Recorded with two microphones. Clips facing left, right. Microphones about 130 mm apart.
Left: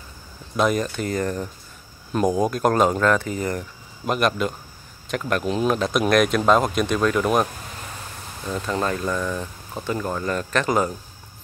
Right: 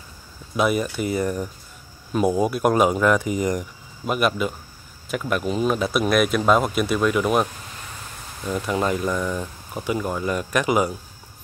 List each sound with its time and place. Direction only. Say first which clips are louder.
0.6 s speech: even; 10° right (ahead or behind)
4.0 s speech: even; 5° right (ahead or behind)
8.5 s speech: right 2 dB; 10° right (ahead or behind)